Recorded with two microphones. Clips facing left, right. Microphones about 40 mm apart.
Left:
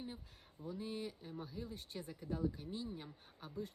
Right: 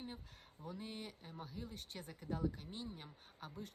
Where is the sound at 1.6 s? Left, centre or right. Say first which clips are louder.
Left 3 dB; right.